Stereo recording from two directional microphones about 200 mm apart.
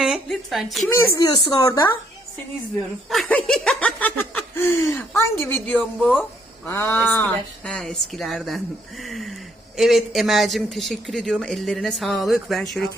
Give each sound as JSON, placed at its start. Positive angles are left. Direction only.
{"t": 0.0, "sound": "a woman's voice", "side_deg": 0}
{"t": 1.2, "sound": "speech", "side_deg": 20}
{"t": 3.1, "sound": "laughter", "side_deg": 5}
{"t": 6.7, "sound": "speech", "side_deg": 10}